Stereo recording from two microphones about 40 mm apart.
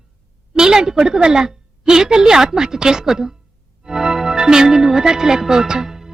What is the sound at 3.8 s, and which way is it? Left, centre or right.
Music, centre.